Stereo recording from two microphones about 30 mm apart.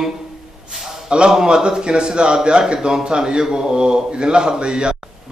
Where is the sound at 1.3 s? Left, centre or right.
Right.